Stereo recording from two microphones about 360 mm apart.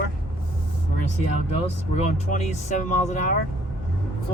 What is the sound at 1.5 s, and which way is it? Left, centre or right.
Speech, centre.